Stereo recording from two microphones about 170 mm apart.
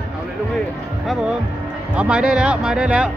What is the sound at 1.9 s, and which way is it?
Speech, 5° right (ahead or behind).